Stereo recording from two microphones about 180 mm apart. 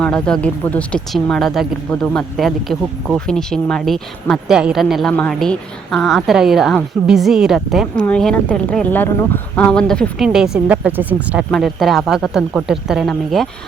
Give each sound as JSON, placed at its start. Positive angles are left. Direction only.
{"t": 0.0, "sound": "speech", "side_deg": 5}